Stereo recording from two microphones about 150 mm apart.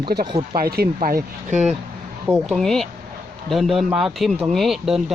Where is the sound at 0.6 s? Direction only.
90° right.